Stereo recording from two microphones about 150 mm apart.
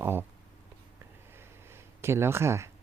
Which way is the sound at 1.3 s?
15° right (ahead or behind).